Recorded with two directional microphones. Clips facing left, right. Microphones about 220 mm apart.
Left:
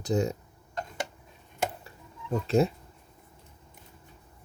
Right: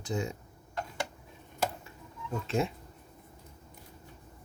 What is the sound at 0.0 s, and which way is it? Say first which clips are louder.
Speech: left 7 dB; 40° left (ahead or behind).